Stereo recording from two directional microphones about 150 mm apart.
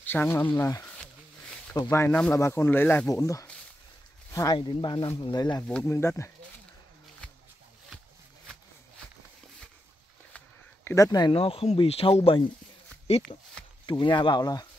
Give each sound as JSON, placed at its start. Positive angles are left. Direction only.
{"t": 0.0, "sound": "speech", "side_deg": 15}
{"t": 4.6, "sound": "speech", "side_deg": 30}
{"t": 5.6, "sound": "speech", "side_deg": 15}
{"t": 10.3, "sound": "speech", "side_deg": 15}